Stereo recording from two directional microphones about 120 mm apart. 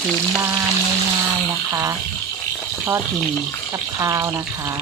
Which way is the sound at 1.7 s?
25° right (ahead or behind).